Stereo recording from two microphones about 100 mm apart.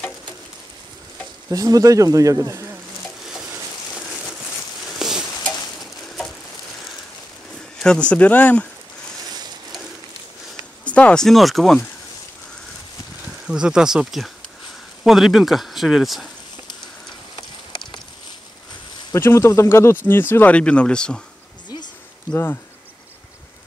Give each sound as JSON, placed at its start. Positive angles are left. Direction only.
{"t": 1.5, "sound": "speech", "side_deg": -35}
{"t": 3.3, "sound": "stir", "side_deg": -5}
{"t": 4.9, "sound": "stir", "side_deg": -5}
{"t": 5.4, "sound": "a sound", "side_deg": 40}
{"t": 5.8, "sound": "a sound", "side_deg": 0}
{"t": 7.8, "sound": "speech", "side_deg": 10}
{"t": 10.9, "sound": "speech", "side_deg": 15}
{"t": 13.5, "sound": "speech", "side_deg": -5}
{"t": 19.1, "sound": "speech", "side_deg": 25}
{"t": 22.3, "sound": "speech", "side_deg": 25}